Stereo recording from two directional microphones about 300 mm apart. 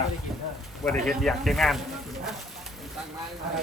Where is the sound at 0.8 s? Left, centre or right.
Centre.